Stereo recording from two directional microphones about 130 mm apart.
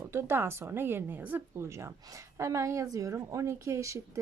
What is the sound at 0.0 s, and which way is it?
A woman's voice, 20° right (ahead or behind).